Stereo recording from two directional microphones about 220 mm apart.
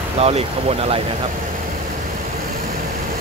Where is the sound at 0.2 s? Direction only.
30° right (ahead or behind).